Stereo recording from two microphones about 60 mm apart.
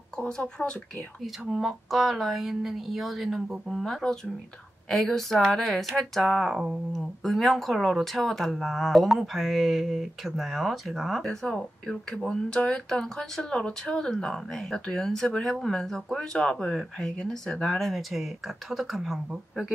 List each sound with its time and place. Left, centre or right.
0.3 s speech: centre
1.5 s speech: centre
11.2 s speech: centre